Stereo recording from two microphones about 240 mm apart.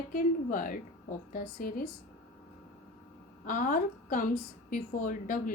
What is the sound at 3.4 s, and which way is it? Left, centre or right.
A woman's voice, left.